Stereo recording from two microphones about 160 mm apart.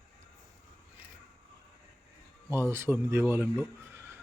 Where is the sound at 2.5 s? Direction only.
15° right (ahead or behind).